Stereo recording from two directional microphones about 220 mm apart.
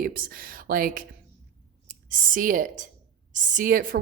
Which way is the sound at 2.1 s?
40° right (ahead or behind).